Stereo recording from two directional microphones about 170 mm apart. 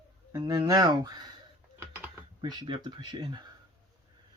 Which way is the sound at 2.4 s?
25° right (ahead or behind).